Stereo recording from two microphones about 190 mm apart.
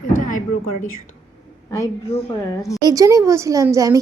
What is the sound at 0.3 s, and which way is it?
Speech, 40° left (ahead or behind).